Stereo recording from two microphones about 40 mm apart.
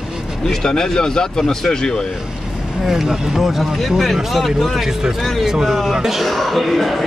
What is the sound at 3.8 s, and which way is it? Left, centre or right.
Speech, centre.